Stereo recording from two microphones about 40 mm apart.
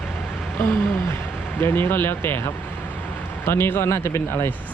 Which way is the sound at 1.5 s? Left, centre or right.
Left.